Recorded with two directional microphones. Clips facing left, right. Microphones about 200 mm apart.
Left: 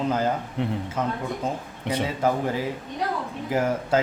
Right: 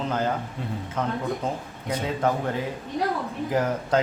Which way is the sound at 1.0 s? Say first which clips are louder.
Right 3 dB; 10° left (ahead or behind).